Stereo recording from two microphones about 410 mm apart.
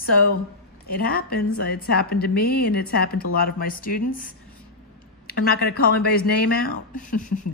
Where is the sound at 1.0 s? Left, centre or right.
Left.